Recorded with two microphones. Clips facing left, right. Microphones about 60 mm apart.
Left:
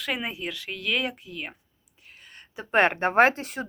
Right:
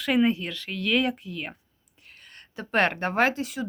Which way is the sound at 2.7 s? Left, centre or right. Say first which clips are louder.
Left 2 dB; left.